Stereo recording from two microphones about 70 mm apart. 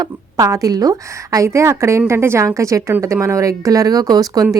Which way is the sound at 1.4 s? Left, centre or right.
Right.